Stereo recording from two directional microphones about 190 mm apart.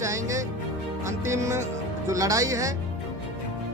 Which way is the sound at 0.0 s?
15° right (ahead or behind).